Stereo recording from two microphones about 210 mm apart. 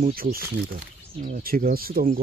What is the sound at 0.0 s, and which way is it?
Speech, 45° right (ahead or behind).